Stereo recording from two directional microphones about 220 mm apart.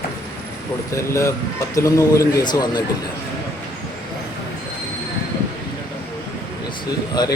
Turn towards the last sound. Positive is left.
turn(degrees=20)  # may be behind; listen again after turning